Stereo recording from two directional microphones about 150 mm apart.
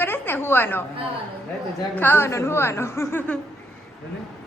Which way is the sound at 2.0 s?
15° left (ahead or behind).